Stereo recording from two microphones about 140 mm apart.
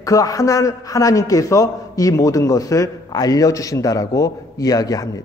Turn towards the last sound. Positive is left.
turn(degrees=25)  # may be behind; listen again after turning